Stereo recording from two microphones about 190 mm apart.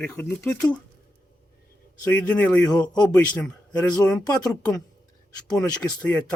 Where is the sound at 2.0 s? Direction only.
10° left (ahead or behind).